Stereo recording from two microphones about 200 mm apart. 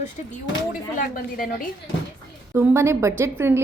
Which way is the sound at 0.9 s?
45° left (ahead or behind).